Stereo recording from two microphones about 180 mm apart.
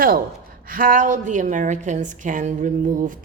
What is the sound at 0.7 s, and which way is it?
Speech, 50° right (ahead or behind).